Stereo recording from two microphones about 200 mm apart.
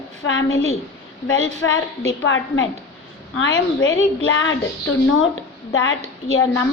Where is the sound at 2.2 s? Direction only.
75° left (ahead or behind).